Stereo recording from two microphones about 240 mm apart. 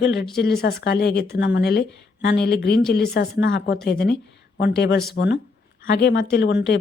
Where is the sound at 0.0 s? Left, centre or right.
Left.